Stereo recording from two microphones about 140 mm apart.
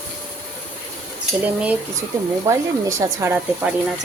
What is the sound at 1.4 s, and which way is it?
Speech, 10° right (ahead or behind).